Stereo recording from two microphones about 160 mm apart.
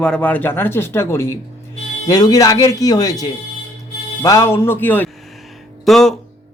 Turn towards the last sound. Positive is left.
turn(degrees=0)  # may be behind; listen again after turning